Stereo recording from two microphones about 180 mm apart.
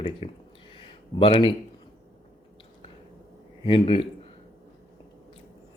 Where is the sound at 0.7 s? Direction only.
30° left (ahead or behind).